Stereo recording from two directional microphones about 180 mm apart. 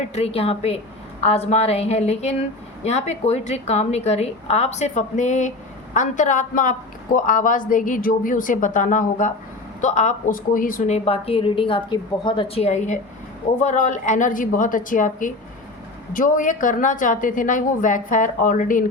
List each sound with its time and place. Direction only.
0.0 s a woman's voice: 35° left (ahead or behind)